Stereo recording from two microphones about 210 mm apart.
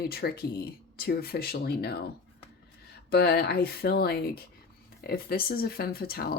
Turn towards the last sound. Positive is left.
turn(degrees=45)  # may be behind; listen again after turning